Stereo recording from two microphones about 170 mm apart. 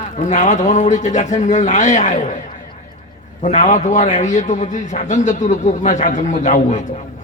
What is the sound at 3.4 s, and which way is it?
A man's voice, 45° left (ahead or behind).